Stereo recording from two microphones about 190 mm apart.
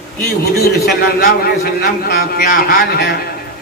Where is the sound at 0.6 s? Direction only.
55° left (ahead or behind).